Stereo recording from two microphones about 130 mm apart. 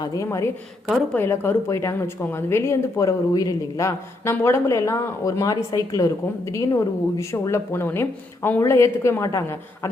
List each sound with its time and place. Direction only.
0.0 s a woman's voice: 25° left (ahead or behind)